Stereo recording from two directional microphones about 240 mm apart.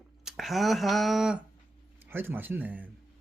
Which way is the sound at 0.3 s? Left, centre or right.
Centre.